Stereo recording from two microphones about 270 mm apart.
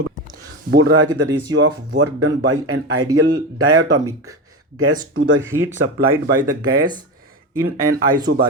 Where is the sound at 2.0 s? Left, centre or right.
Right.